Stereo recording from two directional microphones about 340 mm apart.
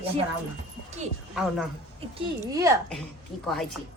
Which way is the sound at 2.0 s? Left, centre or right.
Centre.